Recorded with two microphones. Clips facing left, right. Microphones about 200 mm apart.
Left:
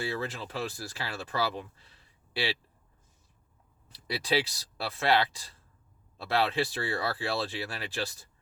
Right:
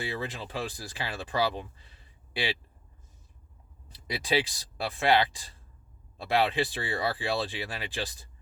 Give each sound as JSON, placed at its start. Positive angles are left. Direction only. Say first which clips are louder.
{"t": 0.0, "sound": "speech", "louder": "left 1 dB", "side_deg": -15}
{"t": 3.9, "sound": "speech", "louder": "right 1 dB", "side_deg": -15}